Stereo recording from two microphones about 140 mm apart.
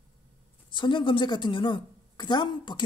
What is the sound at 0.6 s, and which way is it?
A woman's voice, 35° left (ahead or behind).